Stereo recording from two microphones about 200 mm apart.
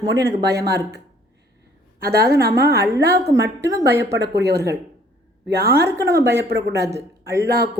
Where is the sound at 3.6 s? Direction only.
15° right (ahead or behind).